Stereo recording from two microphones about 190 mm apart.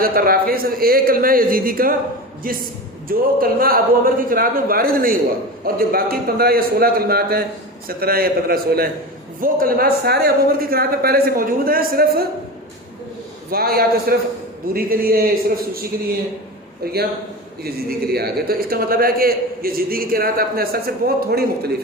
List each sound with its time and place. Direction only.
0.0 s a man's voice: 50° right (ahead or behind)
13.5 s a man's voice: 55° right (ahead or behind)